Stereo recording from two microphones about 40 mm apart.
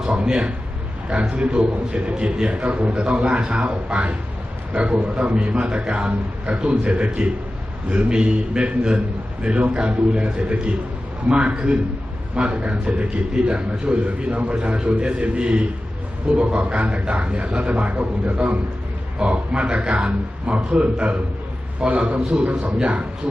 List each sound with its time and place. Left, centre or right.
0.3 s a man's voice: right